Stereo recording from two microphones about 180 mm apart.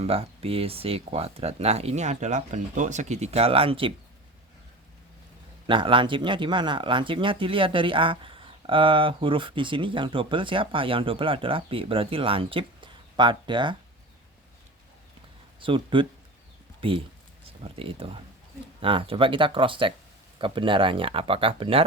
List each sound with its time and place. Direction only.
0.0 s speech: 35° right (ahead or behind)
5.6 s speech: 30° right (ahead or behind)
15.6 s speech: 30° right (ahead or behind)